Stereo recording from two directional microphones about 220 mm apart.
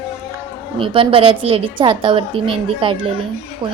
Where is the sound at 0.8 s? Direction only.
25° right (ahead or behind).